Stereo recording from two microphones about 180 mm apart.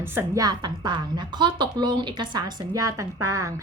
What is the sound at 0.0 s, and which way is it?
A woman's voice, 15° right (ahead or behind).